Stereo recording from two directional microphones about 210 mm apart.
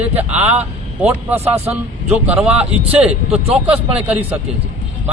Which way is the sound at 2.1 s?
5° right (ahead or behind).